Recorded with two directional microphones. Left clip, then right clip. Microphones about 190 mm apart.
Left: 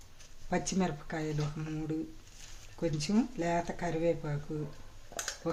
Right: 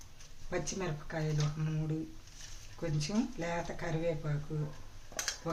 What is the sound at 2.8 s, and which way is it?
Speech, 45° left (ahead or behind).